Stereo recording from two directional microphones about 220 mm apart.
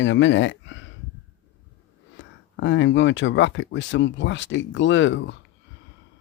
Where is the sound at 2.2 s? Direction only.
55° left (ahead or behind).